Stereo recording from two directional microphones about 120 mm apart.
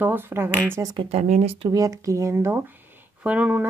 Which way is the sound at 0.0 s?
15° right (ahead or behind).